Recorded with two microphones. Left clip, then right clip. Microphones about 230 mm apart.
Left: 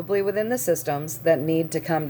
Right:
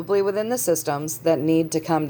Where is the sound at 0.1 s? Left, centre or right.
Centre.